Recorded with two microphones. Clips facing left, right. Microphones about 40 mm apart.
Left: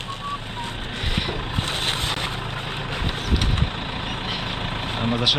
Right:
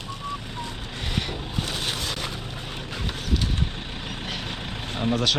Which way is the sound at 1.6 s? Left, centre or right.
Left.